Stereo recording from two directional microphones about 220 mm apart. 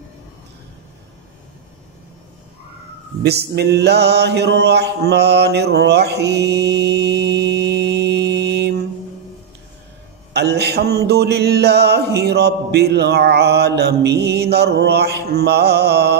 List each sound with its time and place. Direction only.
3.2 s mantra: 50° right (ahead or behind)
10.3 s music: 50° right (ahead or behind)